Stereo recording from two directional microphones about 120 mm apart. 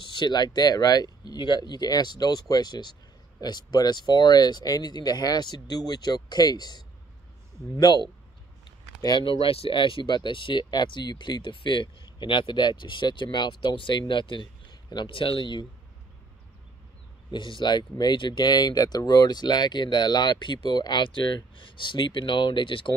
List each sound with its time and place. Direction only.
0.0 s speech: 35° left (ahead or behind)
9.0 s speech: 40° left (ahead or behind)
17.3 s speech: 40° left (ahead or behind)